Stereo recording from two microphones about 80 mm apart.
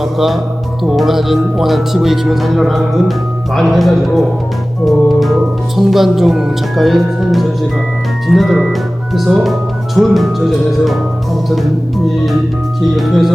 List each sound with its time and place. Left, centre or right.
0.0 s speech: centre
4.9 s organ: centre
5.7 s speech: centre